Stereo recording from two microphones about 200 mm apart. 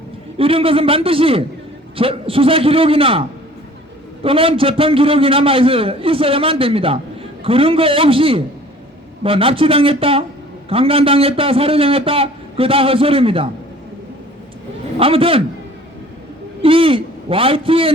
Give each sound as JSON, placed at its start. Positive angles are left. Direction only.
{"t": 0.3, "sound": "a man's voice", "side_deg": -25}
{"t": 14.9, "sound": "a man's voice", "side_deg": -30}
{"t": 16.6, "sound": "a man's voice", "side_deg": -25}